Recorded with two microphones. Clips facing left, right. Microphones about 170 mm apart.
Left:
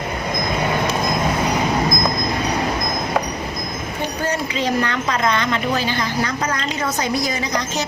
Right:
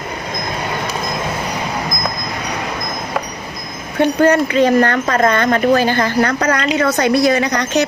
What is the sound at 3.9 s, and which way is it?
A woman's voice, 60° right (ahead or behind).